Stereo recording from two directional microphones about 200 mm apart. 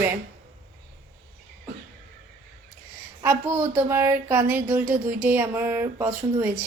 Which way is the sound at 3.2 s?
10° right (ahead or behind).